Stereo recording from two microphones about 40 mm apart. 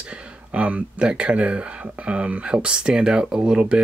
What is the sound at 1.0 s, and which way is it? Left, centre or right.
Speech, right.